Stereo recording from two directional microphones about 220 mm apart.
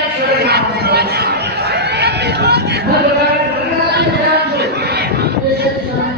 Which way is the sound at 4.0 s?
45° right (ahead or behind).